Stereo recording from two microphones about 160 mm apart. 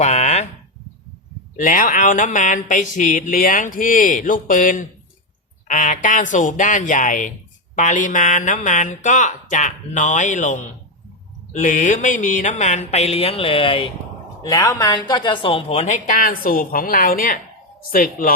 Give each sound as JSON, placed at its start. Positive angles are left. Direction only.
{"t": 0.0, "sound": "a sound", "side_deg": 45}
{"t": 1.5, "sound": "a woman's voice", "side_deg": 55}
{"t": 14.4, "sound": "a woman's voice", "side_deg": 20}